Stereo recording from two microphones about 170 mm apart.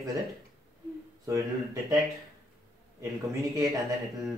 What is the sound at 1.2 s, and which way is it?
Speech, 20° right (ahead or behind).